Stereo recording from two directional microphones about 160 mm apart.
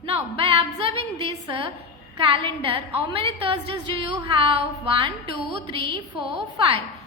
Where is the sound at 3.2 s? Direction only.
30° right (ahead or behind).